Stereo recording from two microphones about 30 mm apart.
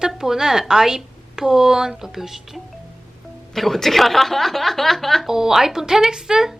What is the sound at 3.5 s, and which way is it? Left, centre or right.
Speech, centre.